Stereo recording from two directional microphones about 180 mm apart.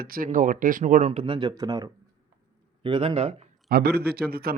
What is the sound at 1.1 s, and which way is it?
Speech, 30° right (ahead or behind).